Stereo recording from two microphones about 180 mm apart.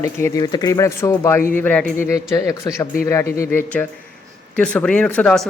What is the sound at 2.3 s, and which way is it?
Speech, 20° left (ahead or behind).